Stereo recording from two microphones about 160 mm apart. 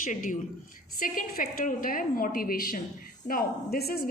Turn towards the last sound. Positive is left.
turn(degrees=80)